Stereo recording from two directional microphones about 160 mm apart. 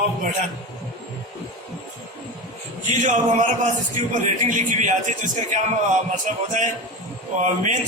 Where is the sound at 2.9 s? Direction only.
50° right (ahead or behind).